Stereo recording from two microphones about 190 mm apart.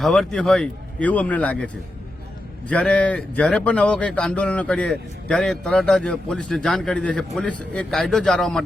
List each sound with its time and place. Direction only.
0.0 s speech: centre (ahead or behind)